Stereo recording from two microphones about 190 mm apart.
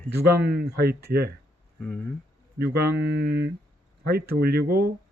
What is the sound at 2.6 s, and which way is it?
Speech, 55° right (ahead or behind).